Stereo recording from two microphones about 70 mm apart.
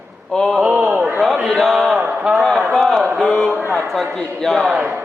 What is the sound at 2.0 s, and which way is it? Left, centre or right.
Speech, centre.